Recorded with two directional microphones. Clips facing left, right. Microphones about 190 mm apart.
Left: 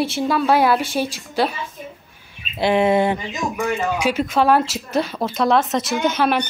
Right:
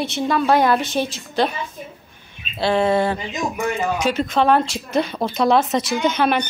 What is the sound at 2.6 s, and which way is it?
Speech, 15° left (ahead or behind).